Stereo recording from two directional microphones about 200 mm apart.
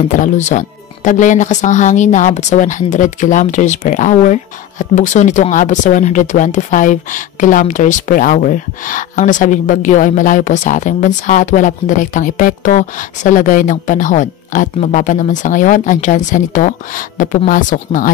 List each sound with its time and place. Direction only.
0.1 s a woman's voice: 35° left (ahead or behind)